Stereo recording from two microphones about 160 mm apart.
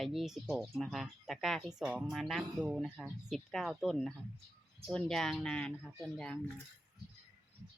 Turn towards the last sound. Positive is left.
turn(degrees=5)  # may be behind; listen again after turning